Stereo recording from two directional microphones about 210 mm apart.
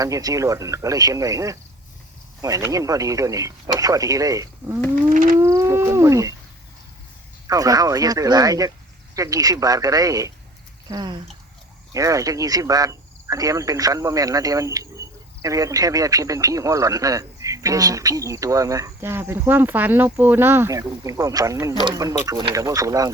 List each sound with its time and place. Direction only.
0.0 s speech: 15° right (ahead or behind)
5.0 s a sound: 40° right (ahead or behind)
5.4 s speech: 10° right (ahead or behind)
7.4 s speech: 15° right (ahead or behind)